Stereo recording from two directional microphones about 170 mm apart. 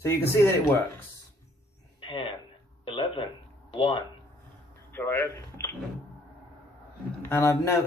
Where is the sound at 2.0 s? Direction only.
30° left (ahead or behind).